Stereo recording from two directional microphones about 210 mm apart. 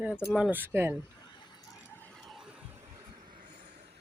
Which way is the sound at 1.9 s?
5° left (ahead or behind).